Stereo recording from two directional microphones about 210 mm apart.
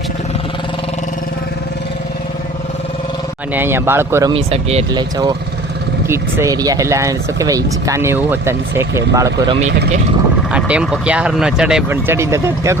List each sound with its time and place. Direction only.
3.5 s speech: 10° right (ahead or behind)
4.4 s speech: 30° right (ahead or behind); by 12.8 s 15° right (ahead or behind)